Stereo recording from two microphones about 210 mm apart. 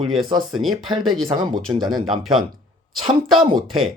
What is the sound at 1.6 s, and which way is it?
Speech, centre (ahead or behind).